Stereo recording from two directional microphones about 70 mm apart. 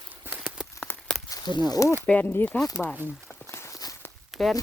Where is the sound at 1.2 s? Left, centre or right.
Left.